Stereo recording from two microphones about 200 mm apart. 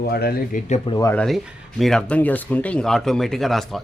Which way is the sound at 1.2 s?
Centre (ahead or behind).